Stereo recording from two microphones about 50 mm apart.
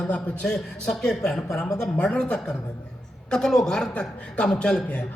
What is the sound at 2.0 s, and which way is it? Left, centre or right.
A man's voice, left.